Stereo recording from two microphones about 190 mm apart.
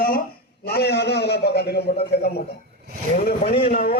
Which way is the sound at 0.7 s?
60° left (ahead or behind).